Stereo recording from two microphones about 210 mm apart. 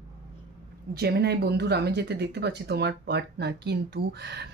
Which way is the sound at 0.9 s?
50° right (ahead or behind).